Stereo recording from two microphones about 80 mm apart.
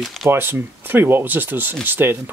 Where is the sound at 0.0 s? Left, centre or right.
Centre.